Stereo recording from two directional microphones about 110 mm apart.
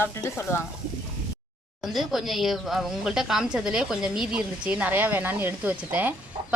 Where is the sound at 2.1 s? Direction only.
Centre (ahead or behind).